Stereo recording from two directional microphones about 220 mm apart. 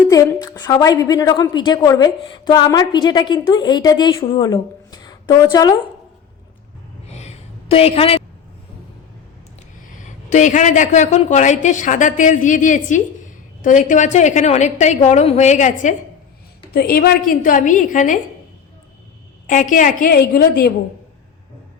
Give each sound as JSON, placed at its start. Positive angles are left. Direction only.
{"t": 0.1, "sound": "a woman's voice", "side_deg": 15}
{"t": 7.1, "sound": "a sound", "side_deg": 30}
{"t": 10.0, "sound": "a woman's voice", "side_deg": 35}
{"t": 19.5, "sound": "a woman's voice", "side_deg": 35}